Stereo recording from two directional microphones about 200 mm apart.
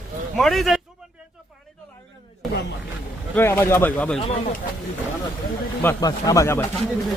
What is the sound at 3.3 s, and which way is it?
Speech, 10° left (ahead or behind).